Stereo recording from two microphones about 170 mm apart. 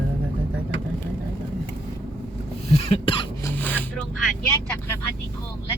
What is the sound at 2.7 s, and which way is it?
Cough, 35° left (ahead or behind).